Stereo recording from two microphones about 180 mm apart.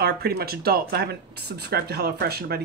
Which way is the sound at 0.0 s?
60° right (ahead or behind).